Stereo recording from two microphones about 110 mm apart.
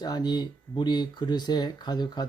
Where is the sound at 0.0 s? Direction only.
40° left (ahead or behind).